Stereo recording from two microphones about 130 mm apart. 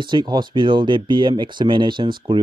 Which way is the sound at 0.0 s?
35° right (ahead or behind).